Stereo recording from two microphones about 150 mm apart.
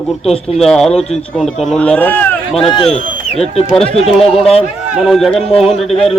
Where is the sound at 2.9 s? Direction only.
45° left (ahead or behind).